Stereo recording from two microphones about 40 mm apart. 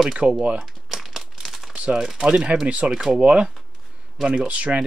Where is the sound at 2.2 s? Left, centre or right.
Right.